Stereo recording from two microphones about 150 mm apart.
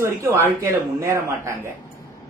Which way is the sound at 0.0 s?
20° right (ahead or behind).